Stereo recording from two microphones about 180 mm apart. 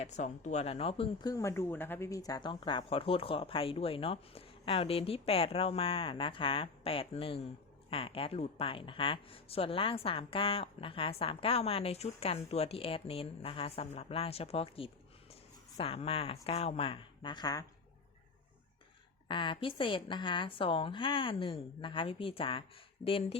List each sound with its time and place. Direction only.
0.0 s speech: 40° left (ahead or behind); by 17.7 s 20° left (ahead or behind)
19.3 s a woman's voice: 25° left (ahead or behind)